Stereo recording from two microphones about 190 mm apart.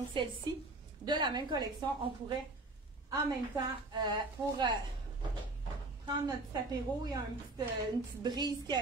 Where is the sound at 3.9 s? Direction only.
25° right (ahead or behind).